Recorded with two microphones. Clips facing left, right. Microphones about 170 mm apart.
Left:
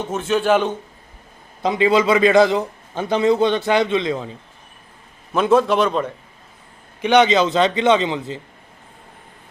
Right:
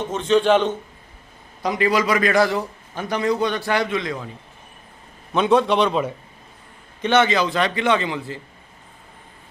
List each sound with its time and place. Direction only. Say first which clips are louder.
0.0 s a man's voice: right 2 dB; 5° left (ahead or behind)
1.6 s a man's voice: left 4 dB; 25° left (ahead or behind)
5.3 s a man's voice: left 2 dB; centre (ahead or behind)
7.0 s a man's voice: left 3 dB; 15° left (ahead or behind)